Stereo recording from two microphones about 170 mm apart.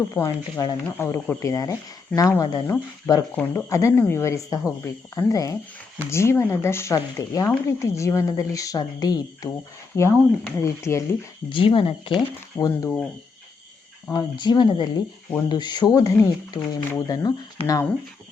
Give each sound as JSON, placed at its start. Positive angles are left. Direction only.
{"t": 0.1, "sound": "speech", "side_deg": 20}
{"t": 11.4, "sound": "speech", "side_deg": 30}
{"t": 14.1, "sound": "speech", "side_deg": 25}